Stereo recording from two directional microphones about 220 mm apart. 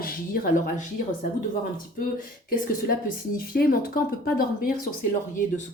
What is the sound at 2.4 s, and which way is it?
Speech, 40° left (ahead or behind).